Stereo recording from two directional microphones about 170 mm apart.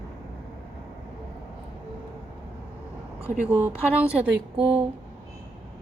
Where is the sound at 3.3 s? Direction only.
10° right (ahead or behind).